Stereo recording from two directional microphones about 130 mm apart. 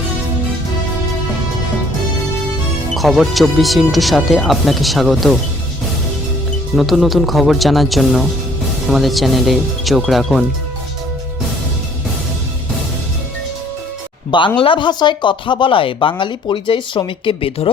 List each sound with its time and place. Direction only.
2.9 s speech: centre (ahead or behind)
6.7 s speech: centre (ahead or behind)
14.3 s speech: 40° left (ahead or behind)